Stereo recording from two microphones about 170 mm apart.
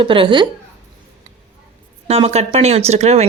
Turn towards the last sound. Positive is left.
turn(degrees=-40)  # may be behind; listen again after turning